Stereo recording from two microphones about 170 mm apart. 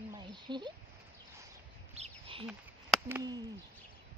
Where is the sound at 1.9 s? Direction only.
35° right (ahead or behind).